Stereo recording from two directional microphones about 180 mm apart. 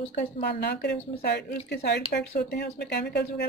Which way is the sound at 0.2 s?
60° left (ahead or behind).